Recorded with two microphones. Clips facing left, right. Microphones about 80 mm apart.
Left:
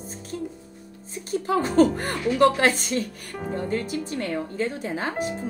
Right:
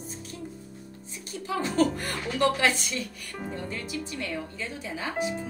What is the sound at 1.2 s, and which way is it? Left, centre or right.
Speech, left.